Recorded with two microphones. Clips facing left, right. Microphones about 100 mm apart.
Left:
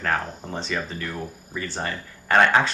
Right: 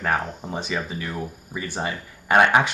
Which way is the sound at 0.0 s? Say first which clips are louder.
Right 1 dB; 10° right (ahead or behind).